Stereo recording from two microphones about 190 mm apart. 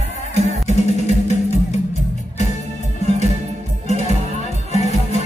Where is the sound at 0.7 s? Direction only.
35° left (ahead or behind).